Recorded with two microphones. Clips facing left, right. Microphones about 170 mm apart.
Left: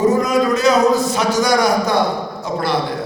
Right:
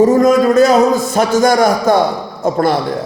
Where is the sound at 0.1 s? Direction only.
50° right (ahead or behind).